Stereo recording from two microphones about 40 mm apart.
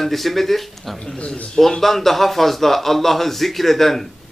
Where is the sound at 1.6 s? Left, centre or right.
Centre.